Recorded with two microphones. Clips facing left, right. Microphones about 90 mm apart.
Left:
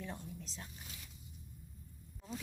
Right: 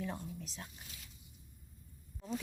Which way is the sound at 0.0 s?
5° right (ahead or behind).